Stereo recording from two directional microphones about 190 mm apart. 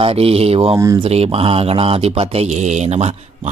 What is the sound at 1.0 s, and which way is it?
A man's voice, 30° right (ahead or behind).